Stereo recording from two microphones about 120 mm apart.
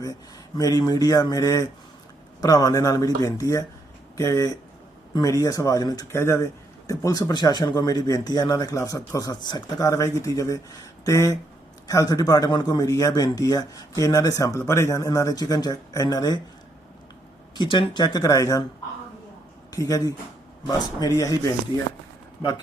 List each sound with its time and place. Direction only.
0.0 s speech: 30° left (ahead or behind)
17.5 s speech: 40° left (ahead or behind)
19.7 s speech: 30° left (ahead or behind)